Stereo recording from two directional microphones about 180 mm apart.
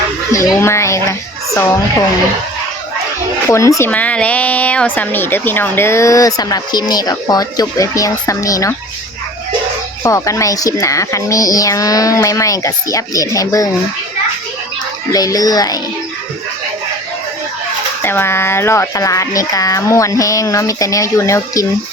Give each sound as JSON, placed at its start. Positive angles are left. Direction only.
{"t": 0.3, "sound": "speech", "side_deg": 15}
{"t": 3.5, "sound": "speech", "side_deg": 15}
{"t": 10.0, "sound": "a woman's voice", "side_deg": 15}
{"t": 15.1, "sound": "a woman's voice", "side_deg": 20}
{"t": 18.0, "sound": "speech", "side_deg": 10}